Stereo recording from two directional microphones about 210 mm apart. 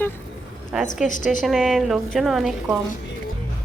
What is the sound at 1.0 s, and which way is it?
Speech, 35° left (ahead or behind).